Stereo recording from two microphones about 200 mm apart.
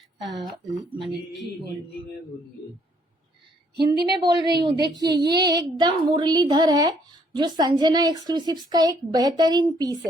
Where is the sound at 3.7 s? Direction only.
55° right (ahead or behind).